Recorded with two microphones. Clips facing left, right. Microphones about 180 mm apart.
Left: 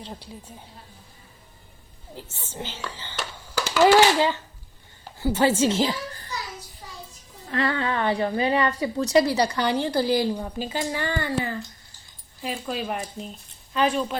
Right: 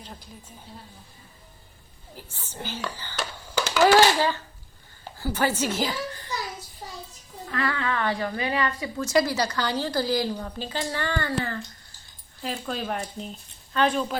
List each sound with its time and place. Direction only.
2.1 s a woman's voice: 25° left (ahead or behind)
3.8 s a sound: 20° left (ahead or behind)
5.2 s a woman's voice: 25° left (ahead or behind)
7.5 s a woman's voice: 25° left (ahead or behind)
9.6 s a woman's voice: 20° left (ahead or behind)
10.3 s a woman's voice: 10° left (ahead or behind)
12.4 s speech: 5° left (ahead or behind)